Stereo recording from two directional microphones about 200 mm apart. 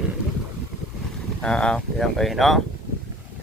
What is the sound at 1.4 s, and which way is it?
Speech, 5° left (ahead or behind).